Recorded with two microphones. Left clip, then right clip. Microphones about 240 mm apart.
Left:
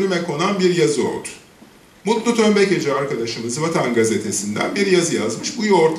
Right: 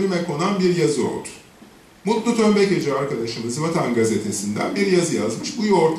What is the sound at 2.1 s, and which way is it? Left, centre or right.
A man's voice, centre.